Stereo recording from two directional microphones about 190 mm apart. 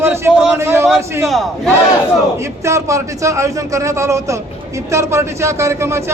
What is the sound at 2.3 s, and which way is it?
A man's voice, 15° right (ahead or behind).